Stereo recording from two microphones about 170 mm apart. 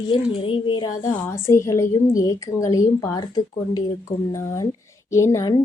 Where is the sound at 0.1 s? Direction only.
30° left (ahead or behind).